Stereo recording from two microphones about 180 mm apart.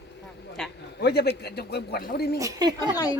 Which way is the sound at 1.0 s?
65° left (ahead or behind).